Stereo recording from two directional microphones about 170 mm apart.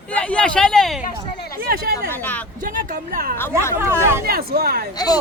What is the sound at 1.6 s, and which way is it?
Speech, 65° right (ahead or behind).